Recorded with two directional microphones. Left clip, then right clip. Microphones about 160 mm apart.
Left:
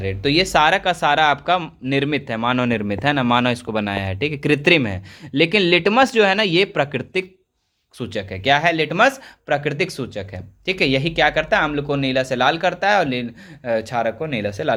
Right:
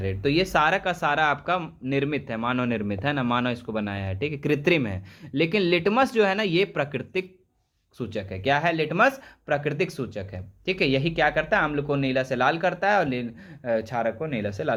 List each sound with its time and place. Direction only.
0.0 s speech: 15° left (ahead or behind)